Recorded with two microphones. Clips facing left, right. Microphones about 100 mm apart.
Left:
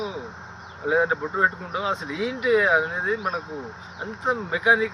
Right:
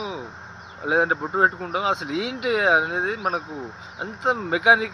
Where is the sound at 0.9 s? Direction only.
70° right (ahead or behind).